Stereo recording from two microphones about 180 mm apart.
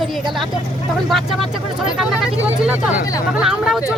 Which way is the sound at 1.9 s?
Centre (ahead or behind).